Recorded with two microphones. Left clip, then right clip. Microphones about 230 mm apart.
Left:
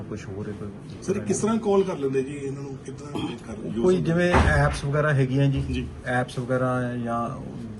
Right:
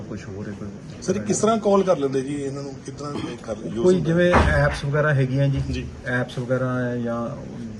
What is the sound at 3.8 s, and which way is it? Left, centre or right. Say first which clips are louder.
A man's voice: right 3 dB; centre.